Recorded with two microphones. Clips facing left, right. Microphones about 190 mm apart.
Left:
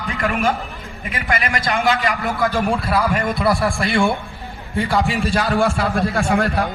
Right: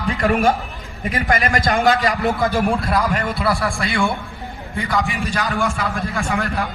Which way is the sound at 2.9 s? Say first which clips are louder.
Left 1 dB; 5° left (ahead or behind).